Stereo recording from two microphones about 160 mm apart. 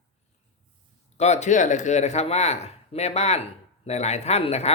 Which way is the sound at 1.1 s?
45° left (ahead or behind).